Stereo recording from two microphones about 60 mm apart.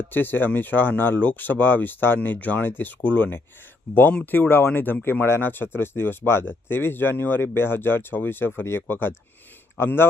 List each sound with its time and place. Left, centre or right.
0.0 s speech: left